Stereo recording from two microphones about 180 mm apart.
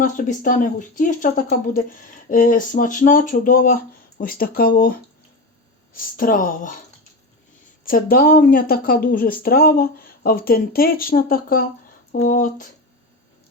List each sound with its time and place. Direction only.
0.0 s speech: 45° left (ahead or behind)
7.9 s speech: 50° left (ahead or behind)